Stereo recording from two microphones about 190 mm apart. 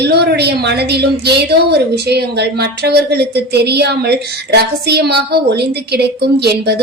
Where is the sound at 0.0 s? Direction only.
60° right (ahead or behind).